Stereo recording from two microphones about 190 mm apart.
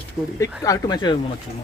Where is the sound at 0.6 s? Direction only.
15° left (ahead or behind).